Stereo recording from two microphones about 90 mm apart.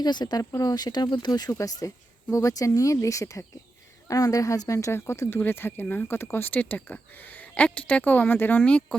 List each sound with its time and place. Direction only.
0.0 s speech: 50° left (ahead or behind); by 9.0 s 15° left (ahead or behind)